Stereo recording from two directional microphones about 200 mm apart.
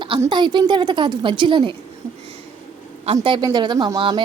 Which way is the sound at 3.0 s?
25° right (ahead or behind).